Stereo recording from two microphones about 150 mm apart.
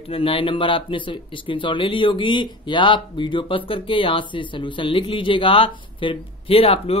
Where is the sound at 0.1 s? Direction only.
40° left (ahead or behind).